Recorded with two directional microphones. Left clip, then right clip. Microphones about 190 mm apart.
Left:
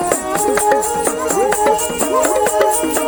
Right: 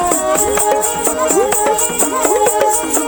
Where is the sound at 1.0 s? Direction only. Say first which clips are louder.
Right 2 dB; 45° right (ahead or behind).